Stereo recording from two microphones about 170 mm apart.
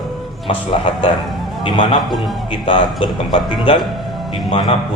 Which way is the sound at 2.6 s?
30° left (ahead or behind).